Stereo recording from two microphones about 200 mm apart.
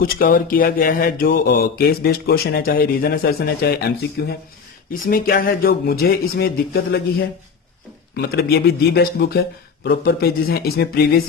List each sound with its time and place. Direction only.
0.0 s speech: 45° left (ahead or behind)